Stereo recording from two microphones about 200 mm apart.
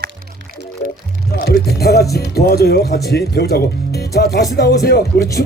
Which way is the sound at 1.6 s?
55° left (ahead or behind).